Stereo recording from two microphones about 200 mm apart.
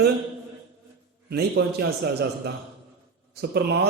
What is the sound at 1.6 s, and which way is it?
A man's voice, 55° right (ahead or behind).